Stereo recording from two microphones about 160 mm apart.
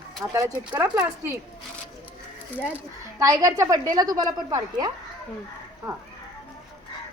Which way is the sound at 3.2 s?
20° right (ahead or behind).